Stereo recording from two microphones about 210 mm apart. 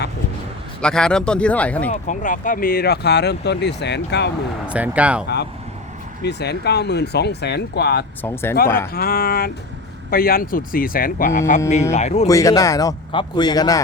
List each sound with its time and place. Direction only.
0.8 s speech: 5° left (ahead or behind)
1.9 s speech: 35° left (ahead or behind); by 4.3 s 55° left (ahead or behind)
4.6 s speech: 5° right (ahead or behind)
6.2 s speech: 50° left (ahead or behind)
8.2 s a man's voice: 10° left (ahead or behind)
8.9 s speech: 45° left (ahead or behind)
12.3 s a man's voice: 15° left (ahead or behind)